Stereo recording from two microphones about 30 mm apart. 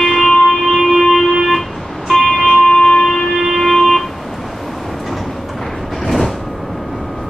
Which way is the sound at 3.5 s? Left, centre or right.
Centre.